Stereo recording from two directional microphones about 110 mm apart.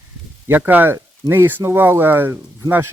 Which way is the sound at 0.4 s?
20° right (ahead or behind).